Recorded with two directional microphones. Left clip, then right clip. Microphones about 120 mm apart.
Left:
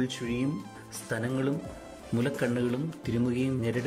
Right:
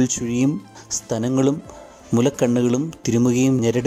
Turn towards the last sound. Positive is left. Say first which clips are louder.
# right 11 dB
turn(degrees=-45)  # may be behind; listen again after turning